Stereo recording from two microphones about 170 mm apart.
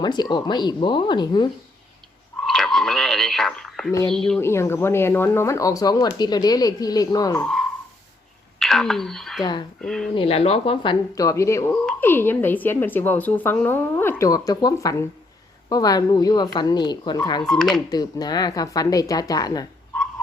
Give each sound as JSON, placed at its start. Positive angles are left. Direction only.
{"t": 0.0, "sound": "speech", "side_deg": 25}
{"t": 2.5, "sound": "a sound", "side_deg": 0}
{"t": 4.1, "sound": "speech", "side_deg": 5}
{"t": 4.4, "sound": "speech", "side_deg": 15}
{"t": 7.4, "sound": "a sound", "side_deg": 0}
{"t": 8.5, "sound": "speech", "side_deg": 5}
{"t": 9.4, "sound": "speech", "side_deg": 25}
{"t": 9.8, "sound": "speech", "side_deg": 0}
{"t": 10.2, "sound": "speech", "side_deg": 35}
{"t": 11.1, "sound": "speech", "side_deg": 20}
{"t": 17.4, "sound": "speech", "side_deg": 5}
{"t": 17.8, "sound": "speech", "side_deg": 25}